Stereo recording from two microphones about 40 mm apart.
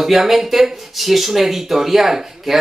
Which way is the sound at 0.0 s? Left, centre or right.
Centre.